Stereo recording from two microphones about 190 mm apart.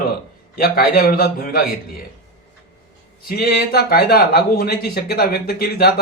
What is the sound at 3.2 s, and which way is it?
Speech, 55° left (ahead or behind).